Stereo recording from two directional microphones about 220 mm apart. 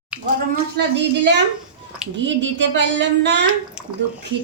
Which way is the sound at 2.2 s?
55° right (ahead or behind).